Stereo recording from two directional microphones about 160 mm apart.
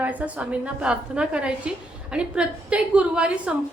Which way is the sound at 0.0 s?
10° right (ahead or behind).